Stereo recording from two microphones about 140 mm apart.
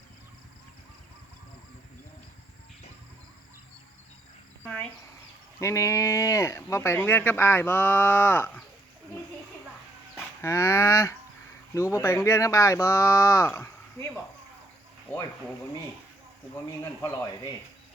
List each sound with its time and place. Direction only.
4.6 s a sound: 10° left (ahead or behind)
5.5 s speech: 20° left (ahead or behind)
10.4 s speech: 20° left (ahead or behind)